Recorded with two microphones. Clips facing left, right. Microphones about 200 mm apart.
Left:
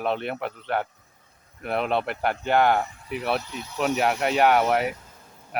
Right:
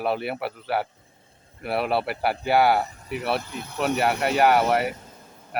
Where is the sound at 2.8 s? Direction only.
40° right (ahead or behind).